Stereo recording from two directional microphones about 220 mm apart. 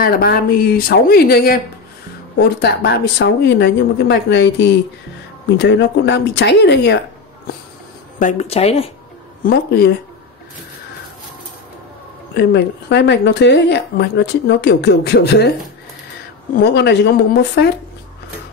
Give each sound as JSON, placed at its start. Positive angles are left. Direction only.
{"t": 0.0, "sound": "speech", "side_deg": 45}
{"t": 8.2, "sound": "speech", "side_deg": 30}
{"t": 9.4, "sound": "speech", "side_deg": 45}
{"t": 12.4, "sound": "speech", "side_deg": 50}
{"t": 16.5, "sound": "speech", "side_deg": 50}